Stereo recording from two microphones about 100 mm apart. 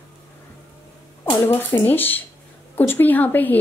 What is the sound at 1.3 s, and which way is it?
A woman's voice, 25° left (ahead or behind).